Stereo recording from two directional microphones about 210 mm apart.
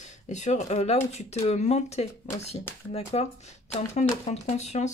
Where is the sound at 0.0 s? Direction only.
35° left (ahead or behind).